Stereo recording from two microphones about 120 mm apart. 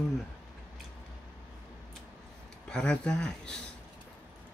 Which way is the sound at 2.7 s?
5° left (ahead or behind).